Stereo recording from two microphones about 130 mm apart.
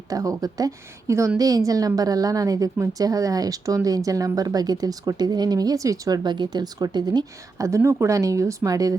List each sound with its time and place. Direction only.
0.1 s a woman's voice: 25° right (ahead or behind)